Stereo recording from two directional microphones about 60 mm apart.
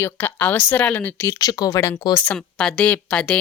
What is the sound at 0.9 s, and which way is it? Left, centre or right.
Speech, left.